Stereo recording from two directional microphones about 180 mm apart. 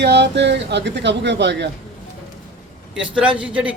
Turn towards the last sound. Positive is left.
turn(degrees=-5)  # may be behind; listen again after turning